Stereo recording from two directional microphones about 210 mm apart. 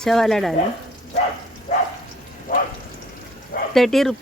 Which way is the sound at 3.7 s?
Centre (ahead or behind).